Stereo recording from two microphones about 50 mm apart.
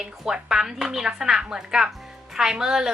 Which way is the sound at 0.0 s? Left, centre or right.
Centre.